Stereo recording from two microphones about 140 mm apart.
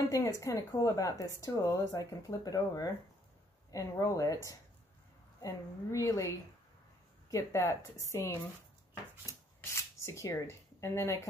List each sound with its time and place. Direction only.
0.1 s a woman's voice: 20° left (ahead or behind)
5.4 s a woman's voice: 25° left (ahead or behind)
9.6 s a sound: 20° left (ahead or behind)